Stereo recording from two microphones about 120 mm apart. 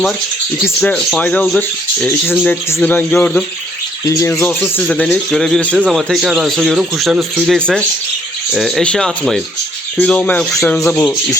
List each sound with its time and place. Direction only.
0.6 s speech: 10° left (ahead or behind)
4.0 s speech: 30° left (ahead or behind)
4.3 s a man's voice: 15° left (ahead or behind)